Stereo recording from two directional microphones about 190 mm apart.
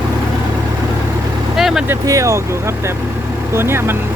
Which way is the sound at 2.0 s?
15° right (ahead or behind).